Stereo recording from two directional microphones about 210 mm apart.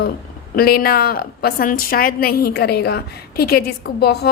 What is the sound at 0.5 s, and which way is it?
A woman's voice, 45° left (ahead or behind).